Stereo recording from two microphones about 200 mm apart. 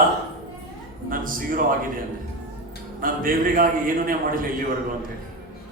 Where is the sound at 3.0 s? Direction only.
45° right (ahead or behind).